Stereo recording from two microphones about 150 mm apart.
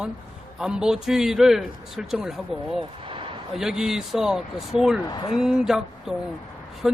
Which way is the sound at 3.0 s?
35° right (ahead or behind).